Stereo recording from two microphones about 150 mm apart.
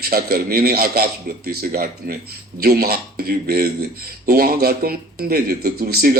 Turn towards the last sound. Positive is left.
turn(degrees=-90)